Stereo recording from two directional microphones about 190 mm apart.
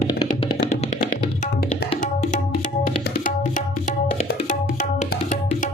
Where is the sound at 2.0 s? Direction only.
40° left (ahead or behind).